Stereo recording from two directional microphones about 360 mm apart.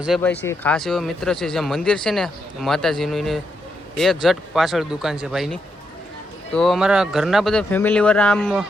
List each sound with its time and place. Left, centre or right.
0.0 s speech: centre